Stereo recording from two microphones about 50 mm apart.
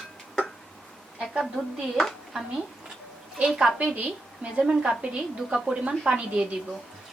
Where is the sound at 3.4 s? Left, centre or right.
Right.